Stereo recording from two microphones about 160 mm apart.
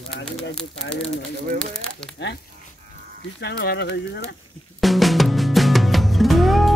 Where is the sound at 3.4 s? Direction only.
90° left.